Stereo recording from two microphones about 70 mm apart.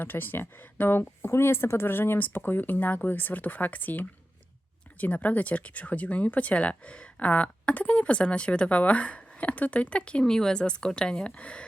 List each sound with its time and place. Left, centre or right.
0.0 s speech: left